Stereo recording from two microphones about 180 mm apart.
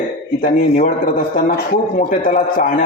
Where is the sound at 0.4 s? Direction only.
45° left (ahead or behind).